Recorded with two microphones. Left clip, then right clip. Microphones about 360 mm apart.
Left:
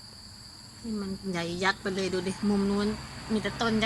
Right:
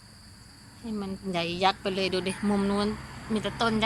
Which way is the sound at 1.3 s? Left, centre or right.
Centre.